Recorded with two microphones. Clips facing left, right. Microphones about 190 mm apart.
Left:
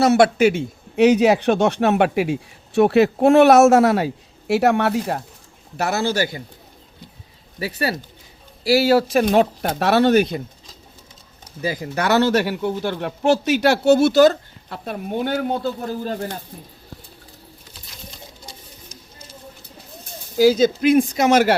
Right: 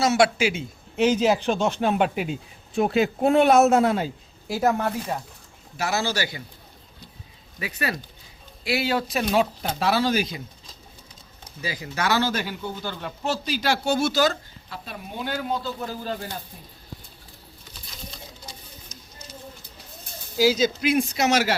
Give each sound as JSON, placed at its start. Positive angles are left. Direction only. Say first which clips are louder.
{"t": 0.0, "sound": "a man's voice", "louder": "left 6 dB", "side_deg": 55}
{"t": 5.7, "sound": "speech", "louder": "left 5 dB", "side_deg": 55}
{"t": 7.6, "sound": "speech", "louder": "left 5 dB", "side_deg": 35}
{"t": 11.6, "sound": "speech", "louder": "left 6 dB", "side_deg": 50}
{"t": 15.8, "sound": "speech", "louder": "left 5 dB", "side_deg": 45}
{"t": 20.3, "sound": "speech", "louder": "left 6 dB", "side_deg": 50}